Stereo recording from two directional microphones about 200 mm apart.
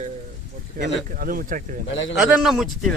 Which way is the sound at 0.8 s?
40° right (ahead or behind).